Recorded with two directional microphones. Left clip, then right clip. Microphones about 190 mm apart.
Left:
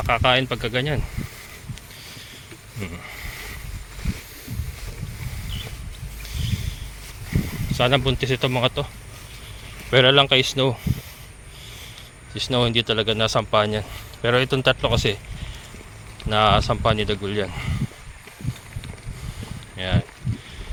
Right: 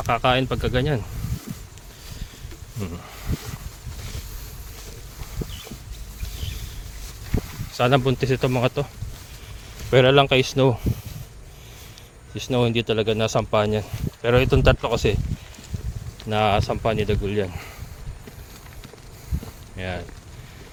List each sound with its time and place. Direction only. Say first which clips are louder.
0.0 s speech: left 1 dB; 30° right (ahead or behind)
7.7 s speech: even; 40° right (ahead or behind)
9.9 s speech: left 1 dB; 35° right (ahead or behind)
12.3 s speech: left 1 dB; 30° right (ahead or behind)
16.3 s speech: left 3 dB; 30° right (ahead or behind)
19.7 s speech: left 4 dB; 25° right (ahead or behind)